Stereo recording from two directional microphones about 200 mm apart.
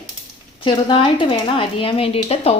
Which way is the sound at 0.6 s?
25° left (ahead or behind).